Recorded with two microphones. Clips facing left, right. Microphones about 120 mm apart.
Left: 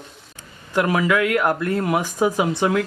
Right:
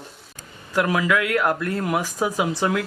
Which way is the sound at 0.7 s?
10° left (ahead or behind).